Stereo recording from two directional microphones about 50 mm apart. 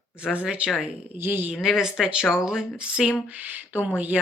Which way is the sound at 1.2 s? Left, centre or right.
Right.